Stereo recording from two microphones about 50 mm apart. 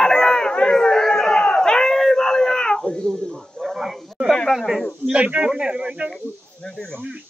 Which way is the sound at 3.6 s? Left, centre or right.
Centre.